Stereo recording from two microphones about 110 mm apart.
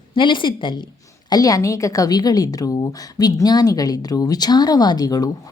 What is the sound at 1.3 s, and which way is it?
A woman's voice, 35° left (ahead or behind).